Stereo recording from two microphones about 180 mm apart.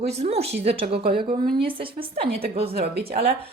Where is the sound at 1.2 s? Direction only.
50° right (ahead or behind).